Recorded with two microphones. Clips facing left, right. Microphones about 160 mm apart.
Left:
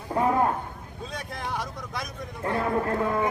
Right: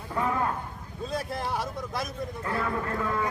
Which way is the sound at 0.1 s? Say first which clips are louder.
Left 5 dB; 40° left (ahead or behind).